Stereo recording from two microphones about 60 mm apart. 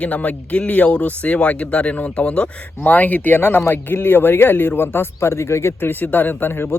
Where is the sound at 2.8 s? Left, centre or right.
Left.